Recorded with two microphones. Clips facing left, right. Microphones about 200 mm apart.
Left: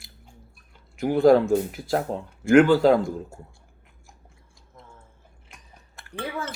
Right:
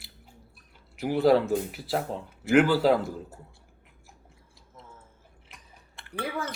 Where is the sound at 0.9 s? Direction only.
5° right (ahead or behind).